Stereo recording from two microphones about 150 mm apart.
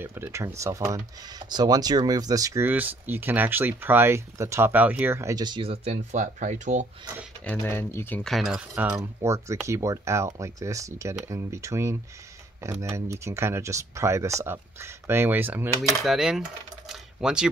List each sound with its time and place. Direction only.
0.0 s speech: 15° right (ahead or behind); by 5.9 s 35° right (ahead or behind)
6.1 s speech: 55° right (ahead or behind)
7.4 s speech: 15° left (ahead or behind)
8.2 s speech: centre (ahead or behind)
15.9 s speech: centre (ahead or behind)